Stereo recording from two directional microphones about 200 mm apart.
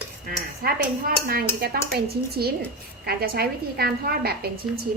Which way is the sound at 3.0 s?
50° right (ahead or behind).